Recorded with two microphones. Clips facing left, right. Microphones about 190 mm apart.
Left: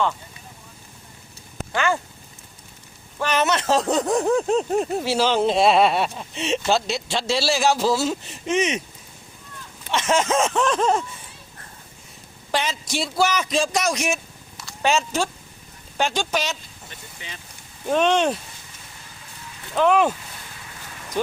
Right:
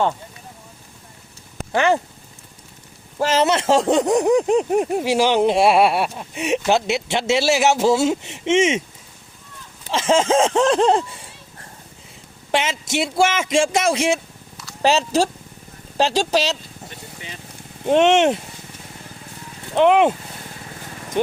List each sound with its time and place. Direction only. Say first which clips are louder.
1.7 s a man's voice: right 5 dB; 20° right (ahead or behind)
3.2 s a man's voice: right 4 dB; 25° right (ahead or behind)
9.9 s a sound: right 4 dB; 30° right (ahead or behind)
12.5 s a man's voice: right 3 dB; 25° right (ahead or behind)
14.8 s a sound: right 4 dB; 35° right (ahead or behind)
17.8 s a man's voice: right 5 dB; 25° right (ahead or behind)
19.7 s a man's voice: right 4 dB; 20° right (ahead or behind)